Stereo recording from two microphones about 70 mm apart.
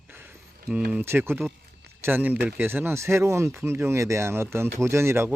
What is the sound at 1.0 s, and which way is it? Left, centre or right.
Speech, right.